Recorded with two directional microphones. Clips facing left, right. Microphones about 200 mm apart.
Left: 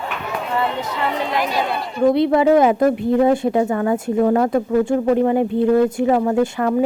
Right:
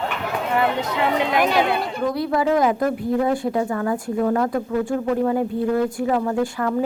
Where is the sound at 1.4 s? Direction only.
60° right (ahead or behind).